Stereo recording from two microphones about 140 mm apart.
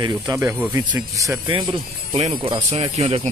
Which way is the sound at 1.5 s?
35° right (ahead or behind).